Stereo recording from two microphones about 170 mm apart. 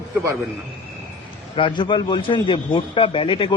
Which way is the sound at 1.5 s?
30° left (ahead or behind).